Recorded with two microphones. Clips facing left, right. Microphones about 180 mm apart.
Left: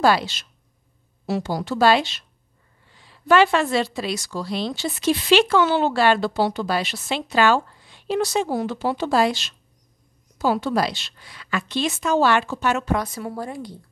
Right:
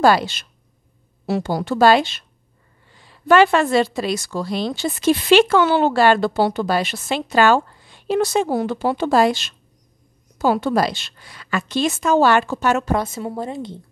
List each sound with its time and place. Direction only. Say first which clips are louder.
0.0 s a woman's voice: right 3 dB; 50° right (ahead or behind)
13.0 s a woman's voice: right 3 dB; 25° right (ahead or behind)